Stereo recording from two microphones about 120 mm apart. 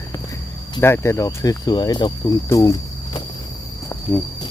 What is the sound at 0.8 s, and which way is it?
Speech, 20° left (ahead or behind).